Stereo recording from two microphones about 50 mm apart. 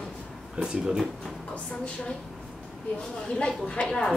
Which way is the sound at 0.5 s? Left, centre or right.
Centre.